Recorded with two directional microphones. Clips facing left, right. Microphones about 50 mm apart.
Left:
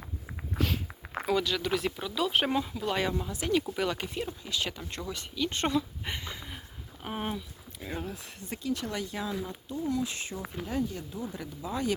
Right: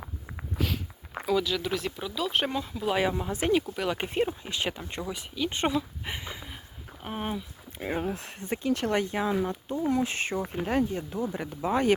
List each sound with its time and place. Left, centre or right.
0.5 s walk: centre
1.1 s speech: centre
2.8 s speech: centre
3.2 s speech: right
4.8 s speech: centre
7.0 s speech: centre
7.8 s speech: right
8.1 s speech: right